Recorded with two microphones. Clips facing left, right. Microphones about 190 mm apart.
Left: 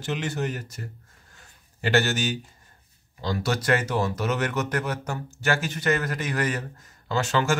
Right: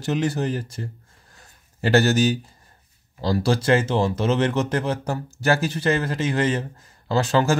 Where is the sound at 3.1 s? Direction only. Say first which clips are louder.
Right 6 dB; 35° right (ahead or behind).